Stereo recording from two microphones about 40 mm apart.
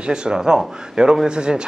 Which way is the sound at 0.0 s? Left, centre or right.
Centre.